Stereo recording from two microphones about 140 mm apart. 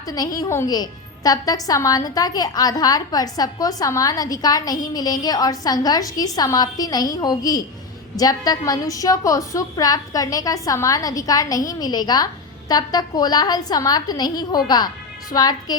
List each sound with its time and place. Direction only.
0.1 s a woman's voice: 25° left (ahead or behind)